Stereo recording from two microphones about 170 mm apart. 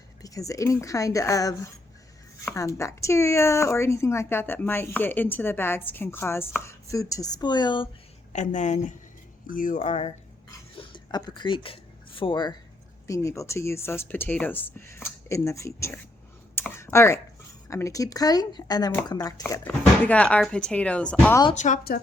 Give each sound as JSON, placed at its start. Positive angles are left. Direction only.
{"t": 0.2, "sound": "a woman's voice", "side_deg": 20}
{"t": 8.3, "sound": "a woman's voice", "side_deg": 45}
{"t": 10.8, "sound": "a sound", "side_deg": 25}
{"t": 13.1, "sound": "speech", "side_deg": 20}
{"t": 16.6, "sound": "computer keyboard", "side_deg": 15}
{"t": 17.7, "sound": "a woman's voice", "side_deg": 15}
{"t": 19.8, "sound": "speech", "side_deg": 5}
{"t": 21.5, "sound": "a woman's voice", "side_deg": 45}